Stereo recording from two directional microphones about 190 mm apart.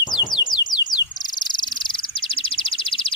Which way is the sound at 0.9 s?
20° left (ahead or behind).